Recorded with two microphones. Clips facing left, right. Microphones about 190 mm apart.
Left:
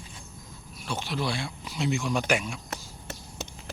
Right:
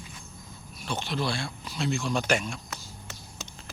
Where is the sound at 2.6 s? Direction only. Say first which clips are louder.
Left 4 dB; 65° left (ahead or behind).